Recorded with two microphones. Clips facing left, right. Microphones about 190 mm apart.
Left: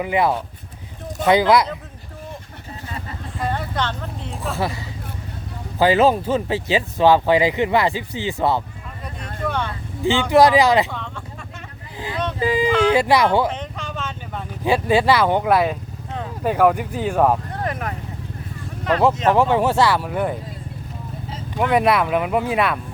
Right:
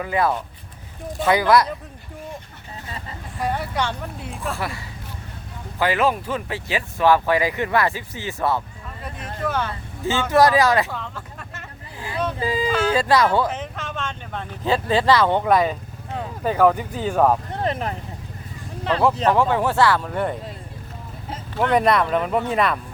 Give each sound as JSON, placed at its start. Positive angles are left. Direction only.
{"t": 0.0, "sound": "speech", "side_deg": 15}
{"t": 3.4, "sound": "speech", "side_deg": -10}
{"t": 4.5, "sound": "speech", "side_deg": 25}
{"t": 5.8, "sound": "speech", "side_deg": 30}
{"t": 9.4, "sound": "vehicle", "side_deg": -5}
{"t": 10.0, "sound": "speech", "side_deg": 15}
{"t": 10.9, "sound": "a sound", "side_deg": -5}
{"t": 12.4, "sound": "speech", "side_deg": 20}
{"t": 13.5, "sound": "speech", "side_deg": -5}
{"t": 17.5, "sound": "vehicle", "side_deg": -25}
{"t": 19.3, "sound": "speech", "side_deg": 20}
{"t": 21.5, "sound": "speech", "side_deg": 10}